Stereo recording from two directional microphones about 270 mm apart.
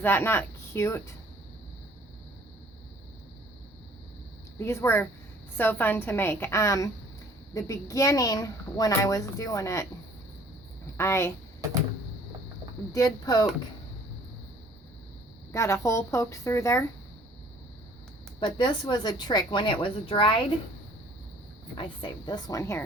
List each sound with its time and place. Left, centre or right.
0.0 s a woman's voice: centre
4.5 s a woman's voice: centre
10.9 s a woman's voice: centre
12.9 s a woman's voice: centre
15.5 s a woman's voice: centre
18.3 s a woman's voice: centre
21.8 s a woman's voice: centre